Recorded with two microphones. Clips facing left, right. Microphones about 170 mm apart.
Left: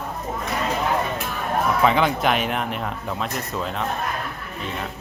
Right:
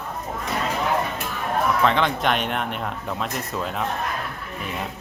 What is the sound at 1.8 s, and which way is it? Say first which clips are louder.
Speech: left 4 dB; 5° left (ahead or behind).